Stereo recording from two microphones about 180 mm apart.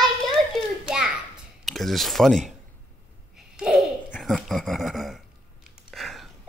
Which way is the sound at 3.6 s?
5° right (ahead or behind).